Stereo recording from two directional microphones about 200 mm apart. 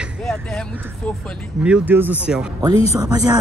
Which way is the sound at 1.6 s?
5° right (ahead or behind).